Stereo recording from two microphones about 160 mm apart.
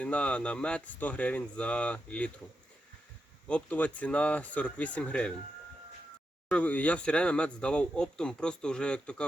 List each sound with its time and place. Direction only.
0.0 s speech: 5° left (ahead or behind)
3.4 s speech: 10° left (ahead or behind)
6.5 s speech: 10° left (ahead or behind)